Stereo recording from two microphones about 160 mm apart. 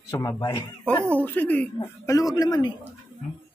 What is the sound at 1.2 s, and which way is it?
A woman's voice, 10° left (ahead or behind).